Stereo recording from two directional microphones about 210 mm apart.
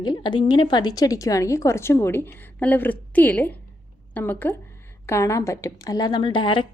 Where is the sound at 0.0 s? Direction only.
20° left (ahead or behind).